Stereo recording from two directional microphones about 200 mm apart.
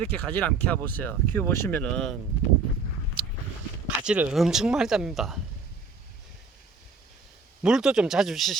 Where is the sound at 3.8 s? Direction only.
5° right (ahead or behind).